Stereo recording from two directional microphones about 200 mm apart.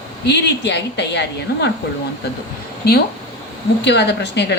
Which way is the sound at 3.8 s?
60° left (ahead or behind).